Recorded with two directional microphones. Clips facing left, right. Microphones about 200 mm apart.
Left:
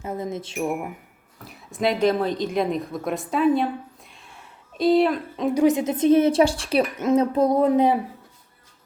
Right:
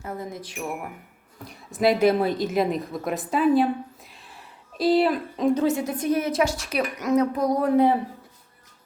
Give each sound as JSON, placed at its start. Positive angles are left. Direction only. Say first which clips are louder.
{"t": 0.0, "sound": "a woman's voice", "louder": "left 4 dB", "side_deg": 20}
{"t": 1.5, "sound": "a woman's voice", "louder": "right 2 dB", "side_deg": 0}
{"t": 4.8, "sound": "a woman's voice", "louder": "left 2 dB", "side_deg": 0}
{"t": 5.5, "sound": "a woman's voice", "louder": "left 4 dB", "side_deg": 15}